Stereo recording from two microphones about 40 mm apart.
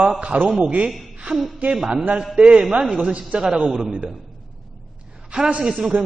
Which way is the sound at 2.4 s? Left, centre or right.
Right.